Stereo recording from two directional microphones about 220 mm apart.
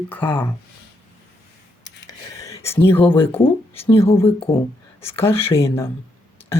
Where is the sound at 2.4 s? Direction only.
15° left (ahead or behind).